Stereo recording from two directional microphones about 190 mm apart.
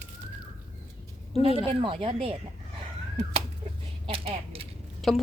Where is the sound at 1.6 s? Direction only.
30° right (ahead or behind).